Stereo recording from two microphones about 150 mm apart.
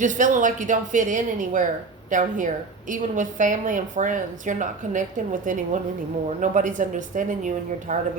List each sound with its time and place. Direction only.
0.0 s a woman's voice: 55° right (ahead or behind)